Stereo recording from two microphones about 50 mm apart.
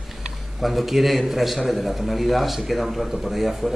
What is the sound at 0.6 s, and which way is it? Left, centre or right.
A man's voice, centre.